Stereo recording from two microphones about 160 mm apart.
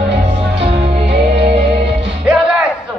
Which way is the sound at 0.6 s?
40° right (ahead or behind).